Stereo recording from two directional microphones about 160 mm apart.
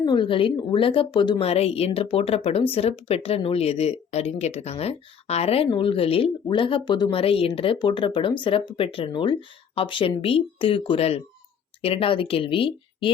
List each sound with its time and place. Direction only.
0.0 s a woman's voice: 30° left (ahead or behind)